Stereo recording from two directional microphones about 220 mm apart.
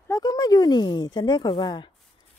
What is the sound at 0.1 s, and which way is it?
Speech, 15° left (ahead or behind).